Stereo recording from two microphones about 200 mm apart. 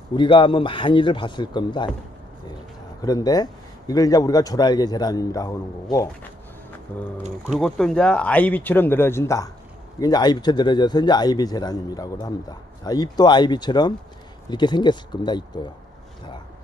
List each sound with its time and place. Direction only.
0.1 s a man's voice: 25° left (ahead or behind)
3.0 s a man's voice: 20° left (ahead or behind)